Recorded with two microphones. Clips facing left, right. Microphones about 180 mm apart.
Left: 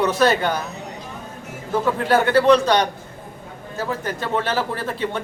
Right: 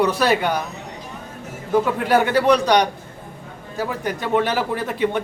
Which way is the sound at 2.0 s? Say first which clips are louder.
Left 3 dB; 15° right (ahead or behind).